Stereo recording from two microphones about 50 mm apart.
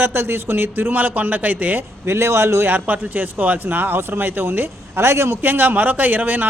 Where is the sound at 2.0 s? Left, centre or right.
Right.